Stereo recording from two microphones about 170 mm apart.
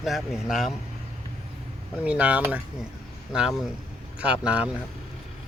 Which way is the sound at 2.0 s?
10° right (ahead or behind).